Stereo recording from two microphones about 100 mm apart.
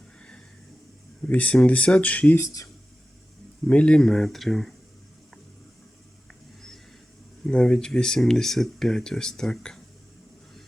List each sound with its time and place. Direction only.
0.2 s a sound: 10° left (ahead or behind)
1.3 s speech: 15° left (ahead or behind)
2.4 s speech: 35° left (ahead or behind)
3.7 s speech: 10° left (ahead or behind)
7.4 s speech: 10° left (ahead or behind)